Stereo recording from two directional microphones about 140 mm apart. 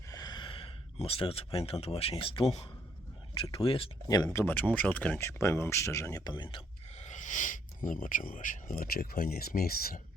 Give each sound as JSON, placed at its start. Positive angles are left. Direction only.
{"t": 0.1, "sound": "speech", "side_deg": 30}
{"t": 4.1, "sound": "speech", "side_deg": 25}
{"t": 6.9, "sound": "speech", "side_deg": 60}